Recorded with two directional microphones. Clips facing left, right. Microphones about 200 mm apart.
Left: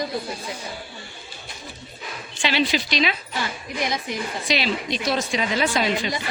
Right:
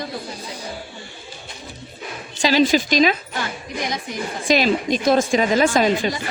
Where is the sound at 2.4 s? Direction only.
40° right (ahead or behind).